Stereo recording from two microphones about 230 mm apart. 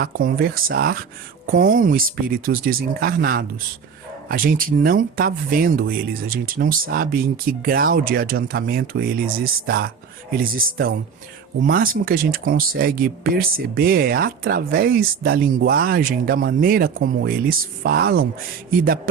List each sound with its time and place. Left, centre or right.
0.0 s speech: right